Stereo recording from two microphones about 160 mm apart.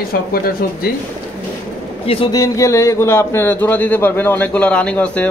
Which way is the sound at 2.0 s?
35° left (ahead or behind).